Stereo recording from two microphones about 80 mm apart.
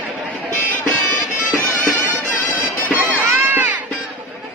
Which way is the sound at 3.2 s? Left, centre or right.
Right.